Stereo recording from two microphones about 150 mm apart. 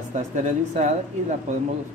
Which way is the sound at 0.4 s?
50° right (ahead or behind).